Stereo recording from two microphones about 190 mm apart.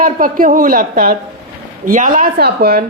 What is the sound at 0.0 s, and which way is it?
A woman's voice, 45° right (ahead or behind).